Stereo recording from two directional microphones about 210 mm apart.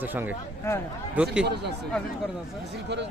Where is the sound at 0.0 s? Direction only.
10° right (ahead or behind).